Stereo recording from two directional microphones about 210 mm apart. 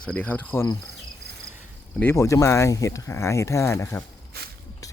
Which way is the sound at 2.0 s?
10° left (ahead or behind).